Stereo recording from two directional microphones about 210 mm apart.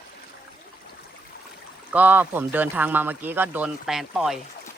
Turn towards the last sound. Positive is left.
turn(degrees=0)  # may be behind; listen again after turning